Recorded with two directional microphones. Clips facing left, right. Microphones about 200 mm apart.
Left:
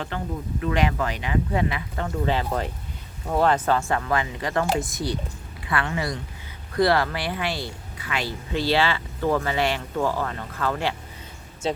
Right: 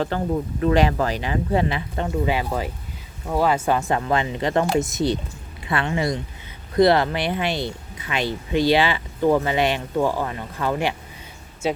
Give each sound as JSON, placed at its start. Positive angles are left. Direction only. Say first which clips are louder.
{"t": 0.1, "sound": "speech", "louder": "right 6 dB", "side_deg": -35}
{"t": 2.0, "sound": "speech", "louder": "right 1 dB", "side_deg": -10}